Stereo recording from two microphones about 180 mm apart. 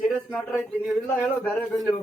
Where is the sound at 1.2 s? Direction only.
Centre (ahead or behind).